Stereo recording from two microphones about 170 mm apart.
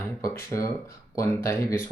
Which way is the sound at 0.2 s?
20° left (ahead or behind).